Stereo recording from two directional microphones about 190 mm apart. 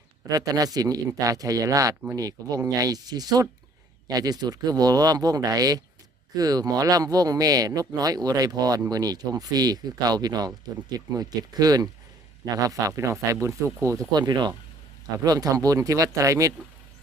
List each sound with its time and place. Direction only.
0.3 s speech: 20° right (ahead or behind)